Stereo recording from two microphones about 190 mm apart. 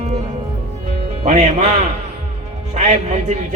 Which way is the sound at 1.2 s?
40° right (ahead or behind).